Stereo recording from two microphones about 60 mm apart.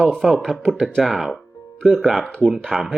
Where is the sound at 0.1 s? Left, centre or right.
Centre.